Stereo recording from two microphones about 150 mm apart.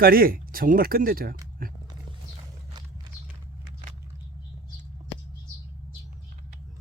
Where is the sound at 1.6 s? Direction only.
70° right (ahead or behind).